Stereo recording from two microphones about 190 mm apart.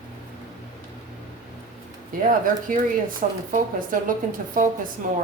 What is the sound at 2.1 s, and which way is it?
Speech, 45° right (ahead or behind).